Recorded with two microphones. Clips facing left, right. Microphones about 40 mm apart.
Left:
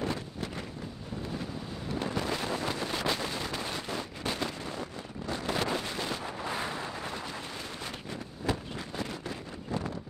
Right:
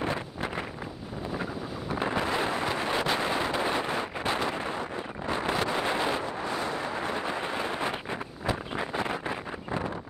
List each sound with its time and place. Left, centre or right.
0.0 s wind noise: right
2.0 s a sound: right
7.0 s vehicle: right